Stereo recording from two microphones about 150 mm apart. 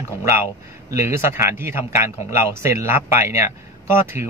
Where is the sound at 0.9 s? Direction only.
15° right (ahead or behind).